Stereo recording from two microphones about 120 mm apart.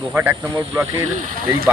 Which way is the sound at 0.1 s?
15° right (ahead or behind).